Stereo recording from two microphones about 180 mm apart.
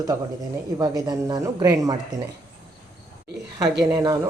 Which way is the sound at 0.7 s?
20° right (ahead or behind).